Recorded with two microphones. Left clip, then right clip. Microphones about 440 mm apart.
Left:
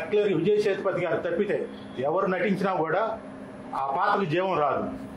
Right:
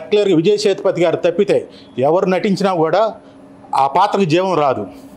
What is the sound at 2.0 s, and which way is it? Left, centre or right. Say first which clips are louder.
A man's voice: right 11 dB; right.